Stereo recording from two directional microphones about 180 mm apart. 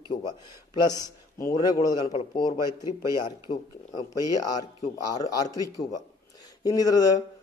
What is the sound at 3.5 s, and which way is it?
A man's voice, 20° left (ahead or behind).